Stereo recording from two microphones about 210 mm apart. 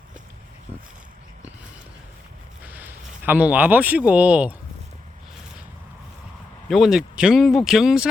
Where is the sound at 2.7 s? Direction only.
10° right (ahead or behind).